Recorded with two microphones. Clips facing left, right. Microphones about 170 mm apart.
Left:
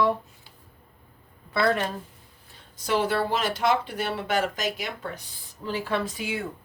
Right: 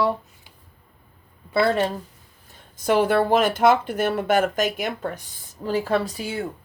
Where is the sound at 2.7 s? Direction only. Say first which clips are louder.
Right 6 dB; 50° right (ahead or behind); by 6.4 s 35° right (ahead or behind).